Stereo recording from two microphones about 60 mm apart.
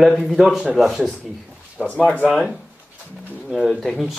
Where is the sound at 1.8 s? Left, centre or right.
Left.